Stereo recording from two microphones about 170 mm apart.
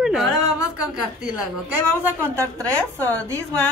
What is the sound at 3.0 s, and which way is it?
Speech, 15° right (ahead or behind).